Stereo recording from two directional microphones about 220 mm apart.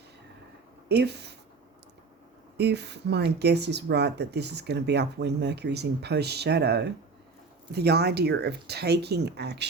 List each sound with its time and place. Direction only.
0.9 s speech: 50° right (ahead or behind)
2.6 s speech: 50° right (ahead or behind)